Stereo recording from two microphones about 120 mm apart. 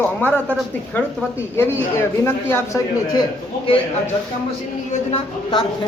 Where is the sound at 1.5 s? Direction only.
20° left (ahead or behind).